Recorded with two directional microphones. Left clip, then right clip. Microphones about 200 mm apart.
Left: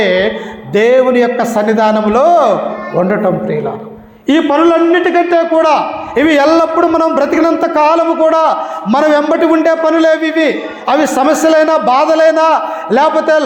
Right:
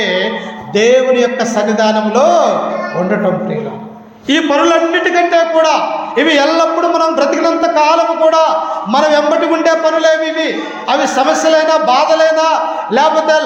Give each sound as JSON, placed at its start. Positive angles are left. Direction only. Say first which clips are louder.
{"t": 0.0, "sound": "music", "louder": "left 3 dB", "side_deg": 50}
{"t": 0.7, "sound": "a man's voice", "louder": "left 1 dB", "side_deg": 50}
{"t": 4.3, "sound": "a man's voice", "louder": "left 1 dB", "side_deg": 45}